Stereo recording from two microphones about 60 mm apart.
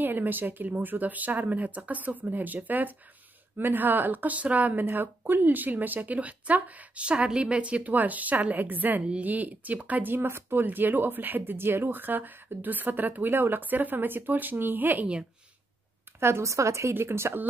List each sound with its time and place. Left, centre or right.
0.0 s speech: right
16.2 s speech: right
16.9 s speech: right